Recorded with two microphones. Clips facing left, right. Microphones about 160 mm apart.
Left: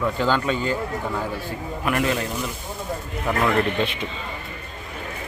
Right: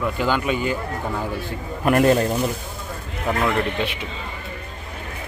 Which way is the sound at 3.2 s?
10° right (ahead or behind).